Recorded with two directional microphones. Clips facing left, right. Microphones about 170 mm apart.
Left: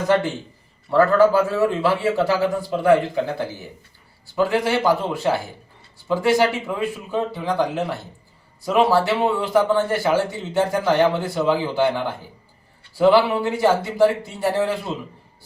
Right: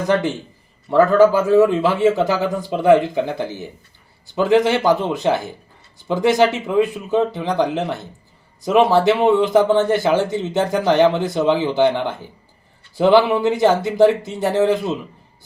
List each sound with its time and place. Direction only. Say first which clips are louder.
0.9 s a man's voice: right 3 dB; 20° right (ahead or behind)